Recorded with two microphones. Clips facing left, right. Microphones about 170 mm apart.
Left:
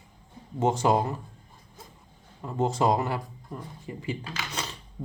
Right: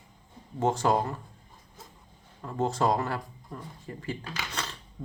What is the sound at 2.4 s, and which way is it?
Speech, 20° left (ahead or behind).